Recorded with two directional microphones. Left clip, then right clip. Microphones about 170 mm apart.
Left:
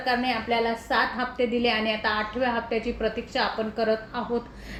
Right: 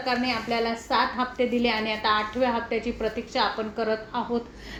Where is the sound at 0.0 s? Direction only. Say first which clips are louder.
Left 1 dB; 25° right (ahead or behind).